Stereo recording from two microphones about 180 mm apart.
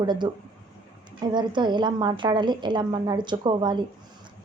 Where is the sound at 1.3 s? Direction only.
25° right (ahead or behind).